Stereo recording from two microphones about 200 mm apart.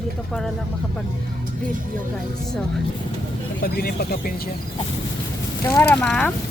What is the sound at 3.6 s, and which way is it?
Speech, 50° left (ahead or behind).